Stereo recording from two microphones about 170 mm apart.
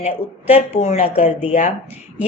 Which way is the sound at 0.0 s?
40° left (ahead or behind).